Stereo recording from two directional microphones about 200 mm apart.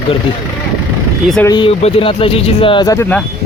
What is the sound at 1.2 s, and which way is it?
Speech, 5° left (ahead or behind).